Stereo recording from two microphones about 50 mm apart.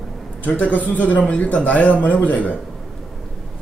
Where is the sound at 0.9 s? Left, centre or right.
Left.